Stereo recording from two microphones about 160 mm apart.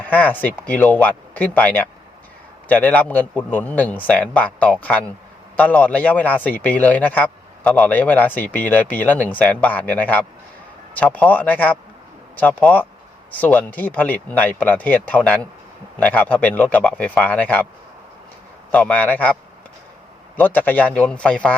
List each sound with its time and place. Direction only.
0.0 s a man's voice: 10° left (ahead or behind)
18.7 s a man's voice: 10° left (ahead or behind)